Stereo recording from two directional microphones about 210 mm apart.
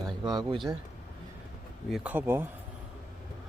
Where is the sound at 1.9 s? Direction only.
10° right (ahead or behind).